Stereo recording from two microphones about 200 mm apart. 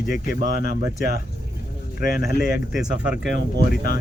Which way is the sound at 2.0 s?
45° left (ahead or behind).